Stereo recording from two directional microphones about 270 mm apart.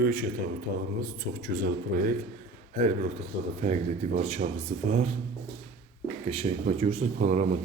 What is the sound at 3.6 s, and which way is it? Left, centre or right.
Speech, right.